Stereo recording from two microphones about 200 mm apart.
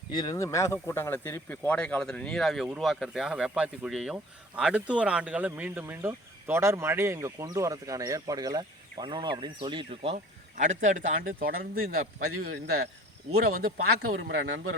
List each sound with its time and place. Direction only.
0.1 s speech: 20° left (ahead or behind); by 10.2 s 30° right (ahead or behind)
10.5 s speech: 40° right (ahead or behind)
14.2 s speech: 60° right (ahead or behind)